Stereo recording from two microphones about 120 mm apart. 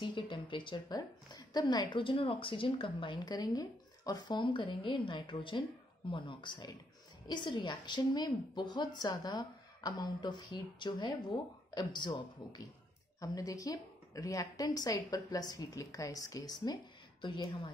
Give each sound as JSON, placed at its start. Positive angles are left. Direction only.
{"t": 0.0, "sound": "a woman's voice", "side_deg": 40}